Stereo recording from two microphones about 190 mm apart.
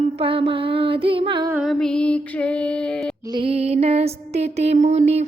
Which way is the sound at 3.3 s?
30° right (ahead or behind).